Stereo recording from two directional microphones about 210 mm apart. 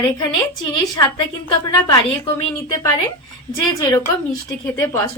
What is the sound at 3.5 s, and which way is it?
A woman's voice, 15° left (ahead or behind).